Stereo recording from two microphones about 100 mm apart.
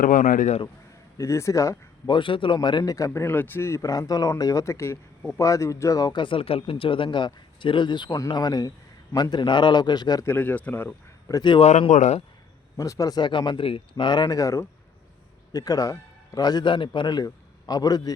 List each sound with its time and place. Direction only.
1.2 s speech: 30° left (ahead or behind)
2.0 s speech: 55° left (ahead or behind)
2.6 s speech: 45° left (ahead or behind)
3.1 s speech: 20° left (ahead or behind)
6.1 s a man's voice: 60° left (ahead or behind); by 10.2 s 45° left (ahead or behind)
10.2 s speech: 20° left (ahead or behind)
11.3 s speech: 30° left (ahead or behind)
11.6 s speech: 90° left
12.7 s a man's voice: 35° left (ahead or behind); by 13.8 s 65° left (ahead or behind)
13.9 s a man's voice: 50° left (ahead or behind)